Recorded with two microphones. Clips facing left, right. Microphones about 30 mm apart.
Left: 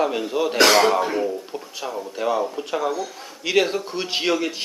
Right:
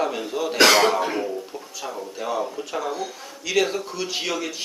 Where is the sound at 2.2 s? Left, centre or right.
Left.